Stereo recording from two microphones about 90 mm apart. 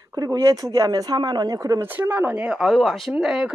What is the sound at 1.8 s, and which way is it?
Speech, 20° right (ahead or behind).